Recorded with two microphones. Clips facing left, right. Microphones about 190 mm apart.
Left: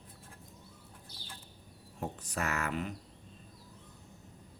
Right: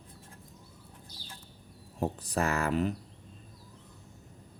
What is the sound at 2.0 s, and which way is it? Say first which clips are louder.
Speech: right 7 dB; 35° right (ahead or behind).